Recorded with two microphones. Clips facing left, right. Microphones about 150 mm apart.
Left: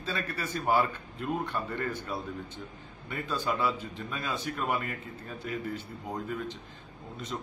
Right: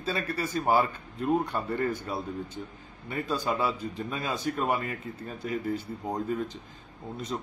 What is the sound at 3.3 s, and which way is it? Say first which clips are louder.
Speech: right 1 dB; 40° right (ahead or behind).